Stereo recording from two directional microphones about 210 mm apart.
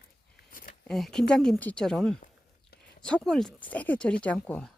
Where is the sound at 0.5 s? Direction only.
40° left (ahead or behind).